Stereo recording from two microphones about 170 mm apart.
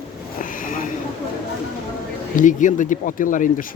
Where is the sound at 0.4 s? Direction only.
50° left (ahead or behind).